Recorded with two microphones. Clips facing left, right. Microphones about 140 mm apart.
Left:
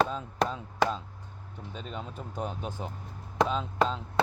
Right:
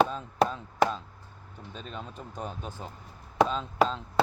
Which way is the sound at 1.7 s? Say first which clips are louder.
Left 1 dB; 10° left (ahead or behind).